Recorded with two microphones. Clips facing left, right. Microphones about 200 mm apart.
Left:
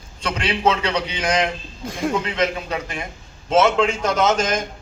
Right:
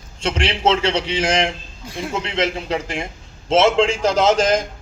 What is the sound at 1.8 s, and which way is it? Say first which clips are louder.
Speech: left 4 dB; 50° left (ahead or behind).